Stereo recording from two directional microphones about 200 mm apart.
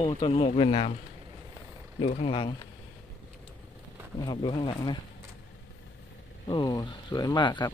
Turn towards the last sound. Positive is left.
turn(degrees=20)  # may be behind; listen again after turning